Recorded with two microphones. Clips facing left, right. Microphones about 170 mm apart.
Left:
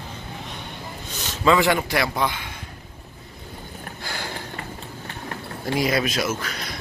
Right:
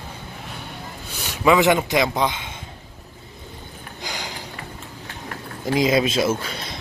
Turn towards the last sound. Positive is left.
turn(degrees=-25)  # may be behind; listen again after turning